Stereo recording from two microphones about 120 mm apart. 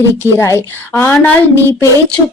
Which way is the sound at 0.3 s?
20° left (ahead or behind).